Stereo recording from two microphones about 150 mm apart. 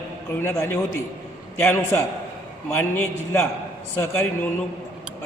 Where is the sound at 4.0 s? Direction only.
15° left (ahead or behind).